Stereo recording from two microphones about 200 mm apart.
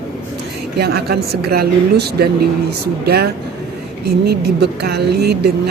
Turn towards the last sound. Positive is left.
turn(degrees=-55)  # may be behind; listen again after turning